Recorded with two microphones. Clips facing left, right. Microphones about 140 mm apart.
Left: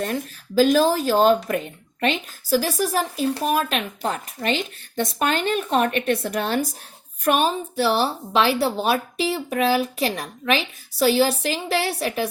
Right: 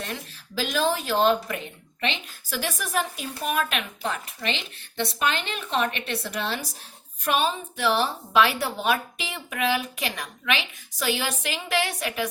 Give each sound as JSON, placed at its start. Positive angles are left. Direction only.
{"t": 0.0, "sound": "a woman's voice", "side_deg": 45}